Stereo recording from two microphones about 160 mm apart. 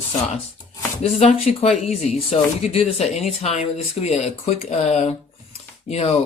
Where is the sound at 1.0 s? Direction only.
40° left (ahead or behind).